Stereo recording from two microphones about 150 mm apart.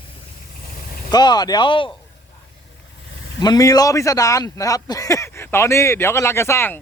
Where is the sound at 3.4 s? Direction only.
25° left (ahead or behind).